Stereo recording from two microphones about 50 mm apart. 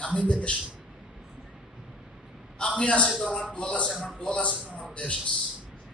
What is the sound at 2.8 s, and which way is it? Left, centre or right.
Speech, left.